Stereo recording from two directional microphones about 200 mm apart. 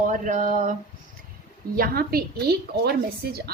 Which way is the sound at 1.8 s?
50° right (ahead or behind).